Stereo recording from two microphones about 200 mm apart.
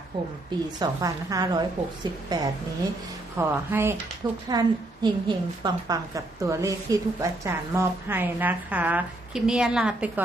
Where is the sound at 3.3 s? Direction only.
10° right (ahead or behind).